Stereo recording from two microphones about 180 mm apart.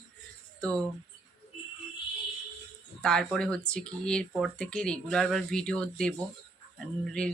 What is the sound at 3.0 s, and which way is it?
Speech, 5° left (ahead or behind).